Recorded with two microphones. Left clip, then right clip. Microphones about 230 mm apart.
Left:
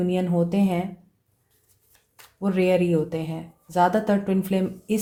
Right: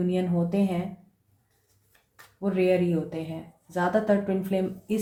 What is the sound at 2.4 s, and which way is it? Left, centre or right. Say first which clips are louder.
Speech: left 2 dB; left.